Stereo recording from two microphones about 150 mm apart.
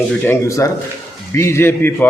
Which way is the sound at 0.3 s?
20° left (ahead or behind).